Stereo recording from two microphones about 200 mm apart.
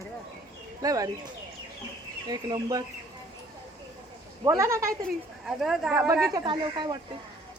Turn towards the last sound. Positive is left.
turn(degrees=-20)  # may be behind; listen again after turning